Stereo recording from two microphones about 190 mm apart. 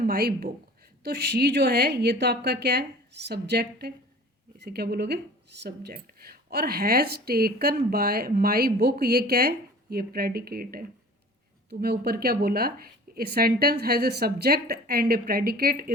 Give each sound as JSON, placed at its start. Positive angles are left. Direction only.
{"t": 0.0, "sound": "a woman's voice", "side_deg": -50}